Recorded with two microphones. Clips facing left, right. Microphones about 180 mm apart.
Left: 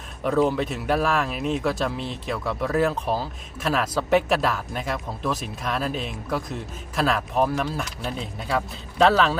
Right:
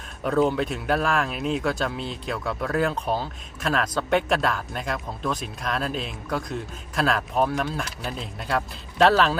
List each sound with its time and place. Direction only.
0.2 s speech: centre (ahead or behind)